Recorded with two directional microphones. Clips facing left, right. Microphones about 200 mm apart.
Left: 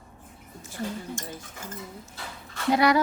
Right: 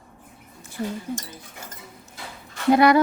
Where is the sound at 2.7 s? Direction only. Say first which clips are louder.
Right 5 dB; 55° right (ahead or behind).